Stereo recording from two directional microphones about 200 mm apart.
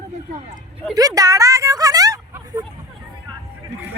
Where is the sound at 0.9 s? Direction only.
20° right (ahead or behind).